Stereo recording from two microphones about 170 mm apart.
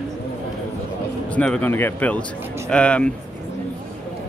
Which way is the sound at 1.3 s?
5° left (ahead or behind).